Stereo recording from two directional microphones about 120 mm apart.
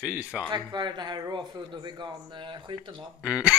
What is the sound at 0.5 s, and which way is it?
Speech, 35° right (ahead or behind).